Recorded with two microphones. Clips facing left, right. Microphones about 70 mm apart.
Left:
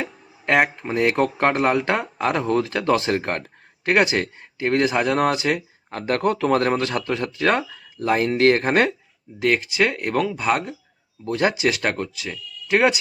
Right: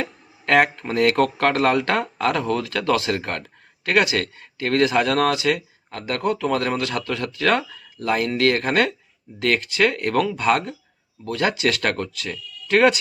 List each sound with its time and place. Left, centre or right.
0.0 s speech: centre
9.4 s speech: centre
11.3 s speech: left